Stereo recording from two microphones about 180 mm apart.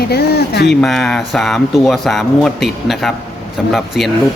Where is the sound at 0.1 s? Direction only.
65° left (ahead or behind).